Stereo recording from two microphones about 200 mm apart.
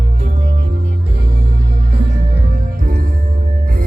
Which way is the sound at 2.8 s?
45° right (ahead or behind).